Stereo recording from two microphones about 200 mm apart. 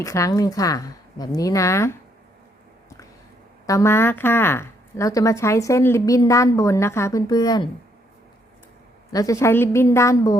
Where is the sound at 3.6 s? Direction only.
15° left (ahead or behind).